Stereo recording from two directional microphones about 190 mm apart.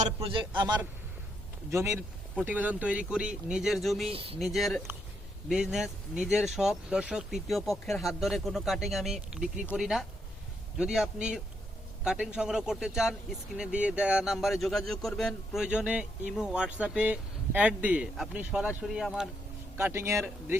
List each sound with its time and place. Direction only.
0.0 s a man's voice: 30° right (ahead or behind)
1.7 s speech: 15° right (ahead or behind)
4.1 s a man's voice: 30° right (ahead or behind)
4.4 s speech: centre (ahead or behind)